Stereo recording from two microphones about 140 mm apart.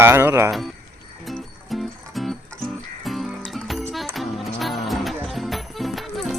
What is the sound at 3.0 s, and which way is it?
Music, centre (ahead or behind).